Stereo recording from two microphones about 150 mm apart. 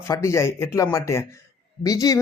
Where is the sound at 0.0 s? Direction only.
20° left (ahead or behind).